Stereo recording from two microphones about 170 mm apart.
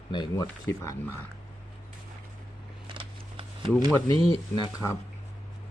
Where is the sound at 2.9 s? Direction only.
30° right (ahead or behind).